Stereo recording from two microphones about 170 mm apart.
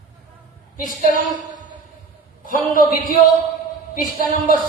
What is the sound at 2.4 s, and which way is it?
Speech, 55° left (ahead or behind).